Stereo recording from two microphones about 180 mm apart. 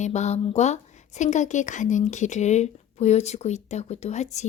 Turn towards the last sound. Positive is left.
turn(degrees=40)  # may be behind; listen again after turning